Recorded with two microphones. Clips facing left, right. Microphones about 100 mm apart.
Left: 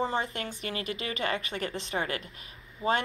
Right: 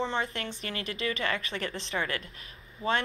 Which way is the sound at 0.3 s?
35° right (ahead or behind).